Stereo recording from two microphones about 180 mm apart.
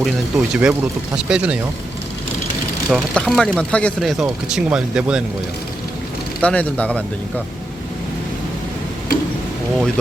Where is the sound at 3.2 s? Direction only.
Centre (ahead or behind).